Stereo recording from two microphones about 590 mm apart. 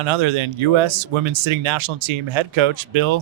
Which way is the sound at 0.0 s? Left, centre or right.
Right.